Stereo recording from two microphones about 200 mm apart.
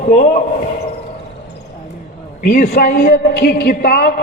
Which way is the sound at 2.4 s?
40° left (ahead or behind).